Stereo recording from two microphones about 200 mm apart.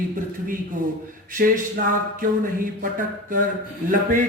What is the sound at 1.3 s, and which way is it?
Speech, 45° right (ahead or behind).